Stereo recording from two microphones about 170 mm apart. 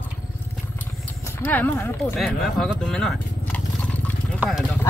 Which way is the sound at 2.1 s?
Centre (ahead or behind).